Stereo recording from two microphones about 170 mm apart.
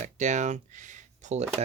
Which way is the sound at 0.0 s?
45° right (ahead or behind).